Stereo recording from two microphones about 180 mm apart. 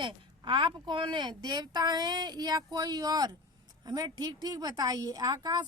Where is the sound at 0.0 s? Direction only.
25° right (ahead or behind).